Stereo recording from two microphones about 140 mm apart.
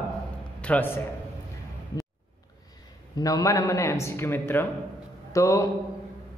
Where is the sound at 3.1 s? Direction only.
25° left (ahead or behind).